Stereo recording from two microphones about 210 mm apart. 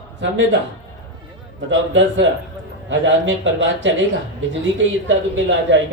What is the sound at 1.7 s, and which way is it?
A man's voice, 60° right (ahead or behind).